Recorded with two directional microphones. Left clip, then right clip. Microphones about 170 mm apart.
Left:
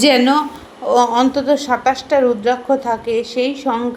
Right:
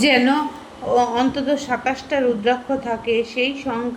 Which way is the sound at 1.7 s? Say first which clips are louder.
Left 6 dB; 30° left (ahead or behind).